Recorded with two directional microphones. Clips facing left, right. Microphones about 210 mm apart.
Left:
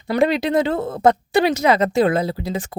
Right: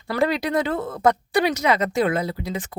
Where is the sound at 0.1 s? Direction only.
25° left (ahead or behind).